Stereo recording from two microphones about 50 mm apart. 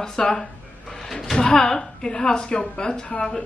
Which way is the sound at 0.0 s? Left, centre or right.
Centre.